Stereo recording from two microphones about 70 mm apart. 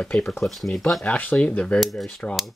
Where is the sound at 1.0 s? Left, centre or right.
Left.